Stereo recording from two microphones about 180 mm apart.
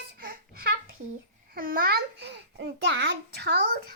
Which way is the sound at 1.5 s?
55° right (ahead or behind).